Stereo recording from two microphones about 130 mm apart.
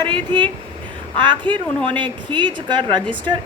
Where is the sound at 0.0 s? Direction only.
35° right (ahead or behind).